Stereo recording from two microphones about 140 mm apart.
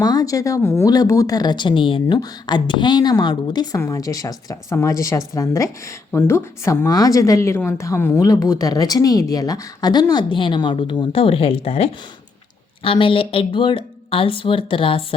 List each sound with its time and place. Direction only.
0.0 s speech: 25° left (ahead or behind)